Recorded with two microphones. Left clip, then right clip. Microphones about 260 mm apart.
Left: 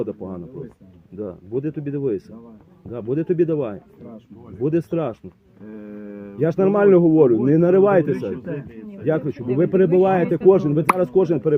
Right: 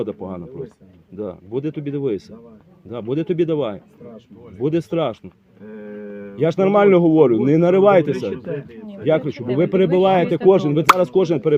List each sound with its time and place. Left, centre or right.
1.2 s a man's voice: right
6.3 s a man's voice: right